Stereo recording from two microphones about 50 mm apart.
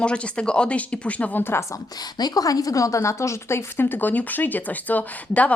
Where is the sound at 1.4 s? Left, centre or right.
Left.